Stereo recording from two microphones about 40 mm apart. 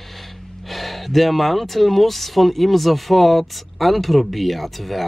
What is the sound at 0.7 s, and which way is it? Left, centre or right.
Speech, centre.